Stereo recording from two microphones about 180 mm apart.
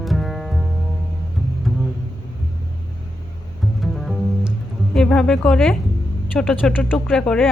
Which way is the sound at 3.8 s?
Centre (ahead or behind).